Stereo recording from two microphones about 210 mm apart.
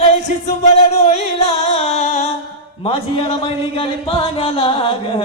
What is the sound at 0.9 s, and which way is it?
Music, 30° left (ahead or behind).